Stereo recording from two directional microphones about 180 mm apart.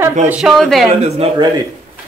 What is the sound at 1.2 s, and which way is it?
Speech, 30° right (ahead or behind).